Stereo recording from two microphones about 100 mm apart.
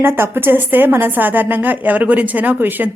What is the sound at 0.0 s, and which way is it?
A woman's voice, 25° right (ahead or behind).